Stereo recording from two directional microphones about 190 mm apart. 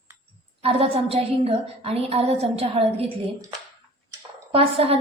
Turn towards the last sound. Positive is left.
turn(degrees=-30)  # may be behind; listen again after turning